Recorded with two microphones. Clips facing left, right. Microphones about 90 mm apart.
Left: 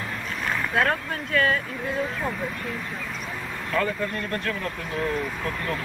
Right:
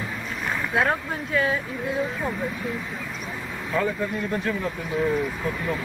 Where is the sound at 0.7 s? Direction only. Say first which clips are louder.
Right 1 dB; 10° right (ahead or behind).